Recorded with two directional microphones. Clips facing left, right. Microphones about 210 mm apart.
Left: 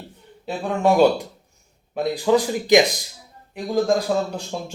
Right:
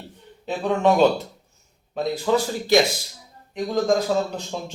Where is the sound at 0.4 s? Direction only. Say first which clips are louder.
Even; 10° left (ahead or behind).